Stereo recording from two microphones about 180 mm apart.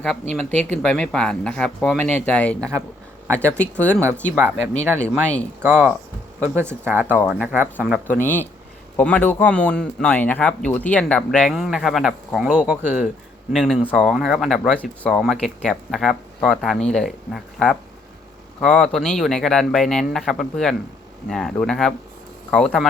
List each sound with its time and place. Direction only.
0.3 s speech: 5° left (ahead or behind)
4.5 s speech: 40° left (ahead or behind)
5.0 s speech: 5° left (ahead or behind)
5.6 s speech: 10° right (ahead or behind)
8.0 s speech: 10° left (ahead or behind)